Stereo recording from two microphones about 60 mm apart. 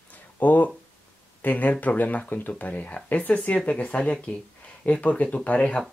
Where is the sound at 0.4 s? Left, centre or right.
Left.